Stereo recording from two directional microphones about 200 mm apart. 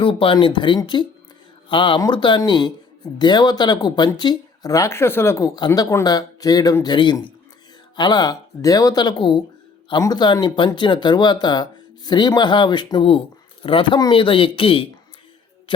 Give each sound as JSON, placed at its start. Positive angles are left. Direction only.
{"t": 0.0, "sound": "speech", "side_deg": 25}